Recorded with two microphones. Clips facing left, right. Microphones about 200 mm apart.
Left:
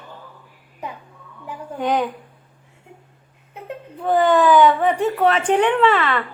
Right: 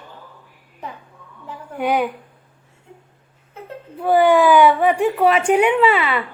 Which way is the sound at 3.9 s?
10° right (ahead or behind).